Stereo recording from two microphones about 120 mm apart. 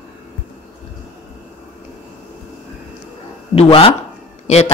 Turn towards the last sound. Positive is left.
turn(degrees=65)  # may be behind; listen again after turning